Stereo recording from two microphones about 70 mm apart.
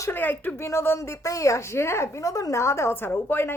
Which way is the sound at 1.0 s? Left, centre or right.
Left.